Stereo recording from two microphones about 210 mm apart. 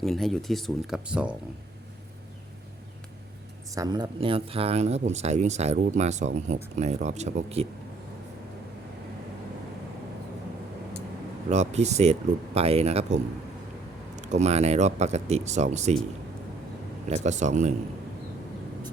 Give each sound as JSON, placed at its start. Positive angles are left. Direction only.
{"t": 0.0, "sound": "speech", "side_deg": 0}
{"t": 3.8, "sound": "speech", "side_deg": -20}
{"t": 11.4, "sound": "speech", "side_deg": -35}
{"t": 14.2, "sound": "speech", "side_deg": -35}
{"t": 17.2, "sound": "speech", "side_deg": -35}